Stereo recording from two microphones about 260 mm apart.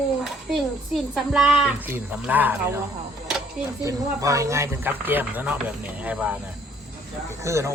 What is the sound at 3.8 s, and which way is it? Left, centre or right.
Speech, centre.